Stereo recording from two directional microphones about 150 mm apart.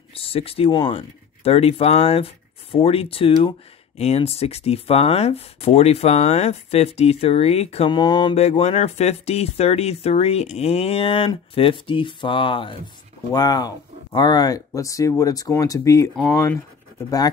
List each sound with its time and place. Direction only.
0.1 s speech: 40° left (ahead or behind)
7.9 s speech: 30° left (ahead or behind)
8.4 s speech: 45° left (ahead or behind); by 16.6 s 20° left (ahead or behind)